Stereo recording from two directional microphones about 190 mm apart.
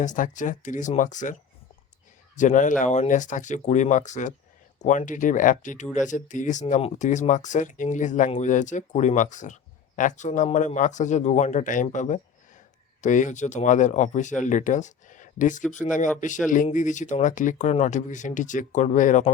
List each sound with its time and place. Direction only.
0.0 s speech: 40° left (ahead or behind)